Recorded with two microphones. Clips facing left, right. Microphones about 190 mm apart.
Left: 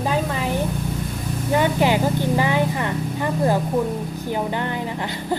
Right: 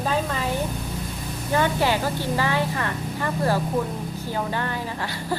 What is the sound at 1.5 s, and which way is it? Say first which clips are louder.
A woman's voice: left 3 dB; 15° left (ahead or behind).